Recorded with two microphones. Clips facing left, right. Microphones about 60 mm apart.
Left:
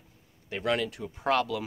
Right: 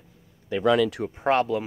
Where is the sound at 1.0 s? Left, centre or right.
Right.